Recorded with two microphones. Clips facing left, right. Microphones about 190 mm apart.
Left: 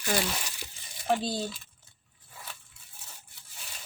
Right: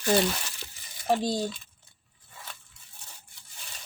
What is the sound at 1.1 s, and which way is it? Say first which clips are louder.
Speech: right 3 dB; 15° right (ahead or behind).